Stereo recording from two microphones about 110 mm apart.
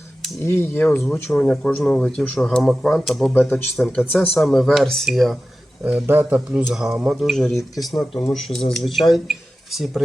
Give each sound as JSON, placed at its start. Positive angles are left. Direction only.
{"t": 0.4, "sound": "speech", "side_deg": 20}
{"t": 1.0, "sound": "speech", "side_deg": 5}
{"t": 3.3, "sound": "speech", "side_deg": 15}
{"t": 4.4, "sound": "speech", "side_deg": 5}
{"t": 6.1, "sound": "a man's voice", "side_deg": -20}
{"t": 6.5, "sound": "speech", "side_deg": -5}